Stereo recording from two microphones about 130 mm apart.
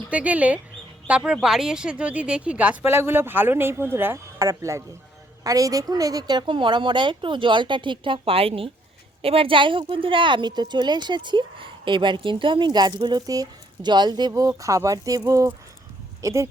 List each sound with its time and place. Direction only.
0.1 s speech: 10° right (ahead or behind)